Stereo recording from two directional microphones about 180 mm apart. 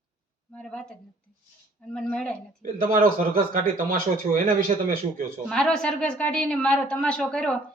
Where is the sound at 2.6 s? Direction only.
50° right (ahead or behind).